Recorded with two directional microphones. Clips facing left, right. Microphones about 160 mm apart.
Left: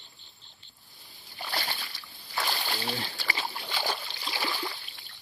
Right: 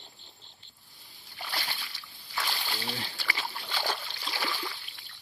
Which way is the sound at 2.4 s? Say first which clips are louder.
Left 3 dB; 50° left (ahead or behind).